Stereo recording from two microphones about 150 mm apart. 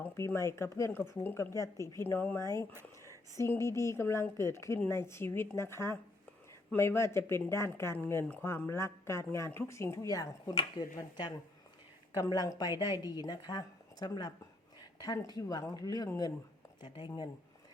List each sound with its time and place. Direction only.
0.0 s a woman's voice: 15° left (ahead or behind); by 17.2 s 30° left (ahead or behind)